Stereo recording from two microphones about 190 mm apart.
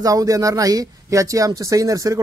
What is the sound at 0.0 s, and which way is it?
Speech, 20° right (ahead or behind).